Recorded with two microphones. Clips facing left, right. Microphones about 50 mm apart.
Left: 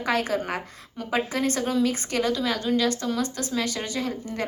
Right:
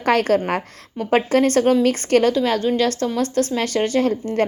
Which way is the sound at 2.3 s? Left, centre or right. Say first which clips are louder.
Right 6 dB; right.